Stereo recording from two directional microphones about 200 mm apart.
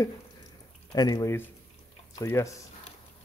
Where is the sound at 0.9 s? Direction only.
20° left (ahead or behind).